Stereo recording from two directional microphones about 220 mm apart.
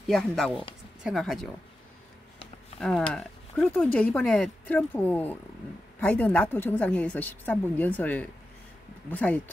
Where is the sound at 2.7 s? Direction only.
5° left (ahead or behind).